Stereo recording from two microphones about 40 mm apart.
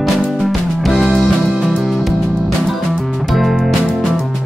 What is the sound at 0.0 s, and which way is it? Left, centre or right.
Music, centre.